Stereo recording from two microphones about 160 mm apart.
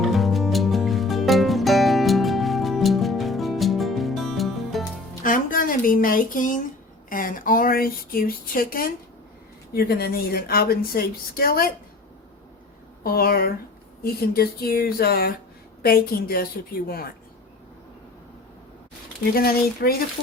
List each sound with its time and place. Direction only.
0.0 s music: centre (ahead or behind)
5.2 s a sound: 60° left (ahead or behind)
7.1 s speech: 60° left (ahead or behind)
9.7 s a woman's voice: 75° left (ahead or behind)
13.0 s a woman's voice: 70° left (ahead or behind)
19.3 s a woman's voice: 70° left (ahead or behind)